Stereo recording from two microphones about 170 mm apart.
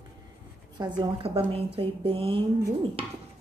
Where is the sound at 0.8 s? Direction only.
25° right (ahead or behind).